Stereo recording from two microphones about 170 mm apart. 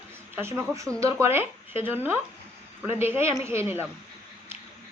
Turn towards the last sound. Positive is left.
turn(degrees=-15)  # may be behind; listen again after turning